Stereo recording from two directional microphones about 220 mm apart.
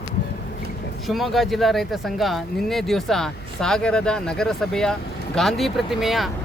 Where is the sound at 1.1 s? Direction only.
Centre (ahead or behind).